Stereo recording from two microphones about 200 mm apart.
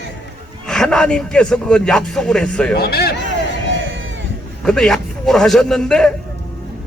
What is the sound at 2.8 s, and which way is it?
Speech, 50° left (ahead or behind).